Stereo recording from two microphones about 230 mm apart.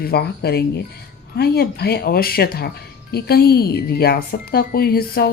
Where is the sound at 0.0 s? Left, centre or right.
Left.